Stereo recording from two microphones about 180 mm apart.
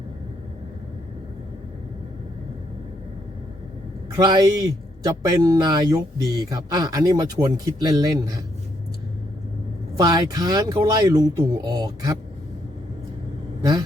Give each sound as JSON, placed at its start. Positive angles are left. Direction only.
{"t": 4.2, "sound": "speech", "side_deg": -25}
{"t": 10.0, "sound": "speech", "side_deg": -20}
{"t": 13.6, "sound": "vehicle", "side_deg": -20}